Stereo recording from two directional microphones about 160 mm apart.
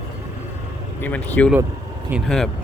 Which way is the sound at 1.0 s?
10° left (ahead or behind).